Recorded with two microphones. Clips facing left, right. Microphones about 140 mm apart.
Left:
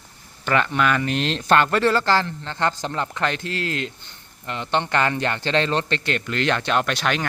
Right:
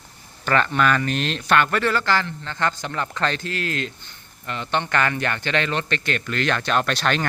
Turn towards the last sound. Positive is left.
turn(degrees=10)  # may be behind; listen again after turning